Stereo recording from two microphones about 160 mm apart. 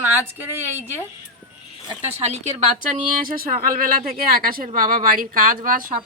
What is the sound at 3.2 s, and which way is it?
A woman's voice, 65° right (ahead or behind).